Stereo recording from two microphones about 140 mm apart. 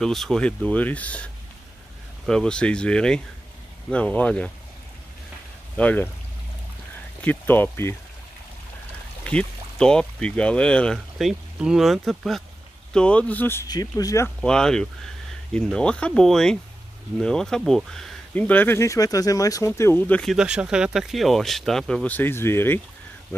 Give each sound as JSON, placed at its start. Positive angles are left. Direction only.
{"t": 0.0, "sound": "speech", "side_deg": 0}
{"t": 5.8, "sound": "speech", "side_deg": 10}
{"t": 7.2, "sound": "speech", "side_deg": 15}
{"t": 9.2, "sound": "speech", "side_deg": 10}
{"t": 13.7, "sound": "speech", "side_deg": 25}
{"t": 14.4, "sound": "speech", "side_deg": 5}